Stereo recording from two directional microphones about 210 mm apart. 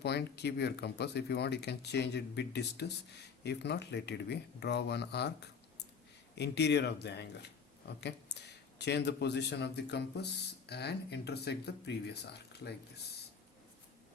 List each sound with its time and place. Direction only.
0.0 s speech: 50° left (ahead or behind)